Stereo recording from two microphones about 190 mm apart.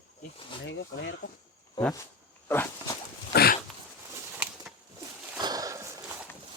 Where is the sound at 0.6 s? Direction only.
75° left (ahead or behind).